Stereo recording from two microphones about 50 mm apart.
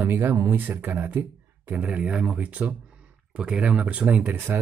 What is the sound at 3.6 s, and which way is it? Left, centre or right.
Speech, right.